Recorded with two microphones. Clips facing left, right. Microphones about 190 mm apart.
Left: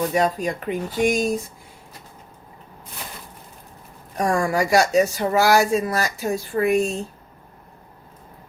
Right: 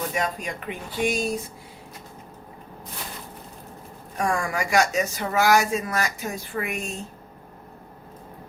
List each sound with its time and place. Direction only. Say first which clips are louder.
0.1 s speech: left 7 dB; 35° left (ahead or behind)
4.2 s speech: left 5 dB; 35° left (ahead or behind)